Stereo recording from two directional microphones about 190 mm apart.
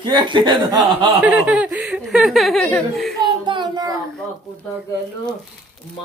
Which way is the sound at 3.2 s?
25° right (ahead or behind).